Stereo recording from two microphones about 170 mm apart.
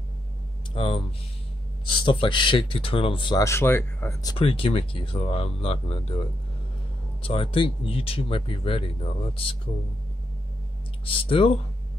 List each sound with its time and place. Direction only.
0.7 s speech: 30° left (ahead or behind)
7.2 s speech: 30° left (ahead or behind)
11.1 s speech: 30° left (ahead or behind)